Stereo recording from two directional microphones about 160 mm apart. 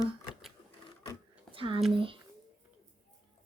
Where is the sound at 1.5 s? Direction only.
35° right (ahead or behind).